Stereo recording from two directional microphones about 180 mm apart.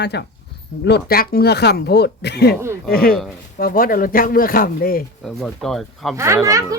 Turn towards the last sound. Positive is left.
turn(degrees=-20)  # may be behind; listen again after turning